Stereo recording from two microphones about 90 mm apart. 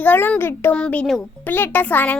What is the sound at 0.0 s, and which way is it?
A child's voice, 20° left (ahead or behind).